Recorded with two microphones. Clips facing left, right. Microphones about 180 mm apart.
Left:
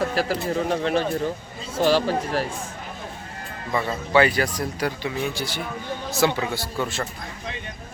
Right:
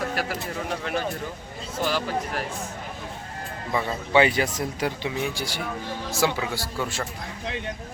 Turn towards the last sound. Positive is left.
turn(degrees=-10)  # may be behind; listen again after turning